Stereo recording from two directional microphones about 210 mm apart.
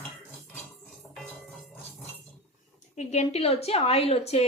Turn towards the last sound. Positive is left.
turn(degrees=30)  # may be behind; listen again after turning